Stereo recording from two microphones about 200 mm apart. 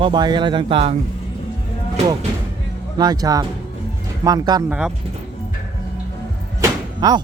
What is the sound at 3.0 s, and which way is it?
Speech, 20° right (ahead or behind).